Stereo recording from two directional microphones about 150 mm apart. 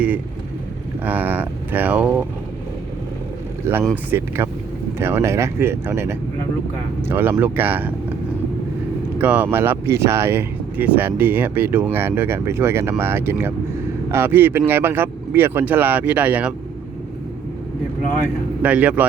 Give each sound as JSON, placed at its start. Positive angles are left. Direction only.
{"t": 1.0, "sound": "speech", "side_deg": -10}
{"t": 4.1, "sound": "speech", "side_deg": -20}
{"t": 9.1, "sound": "speech", "side_deg": -10}
{"t": 18.6, "sound": "speech", "side_deg": -10}